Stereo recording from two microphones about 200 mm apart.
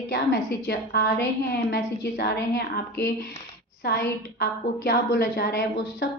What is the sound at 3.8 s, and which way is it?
A woman's voice, 55° left (ahead or behind).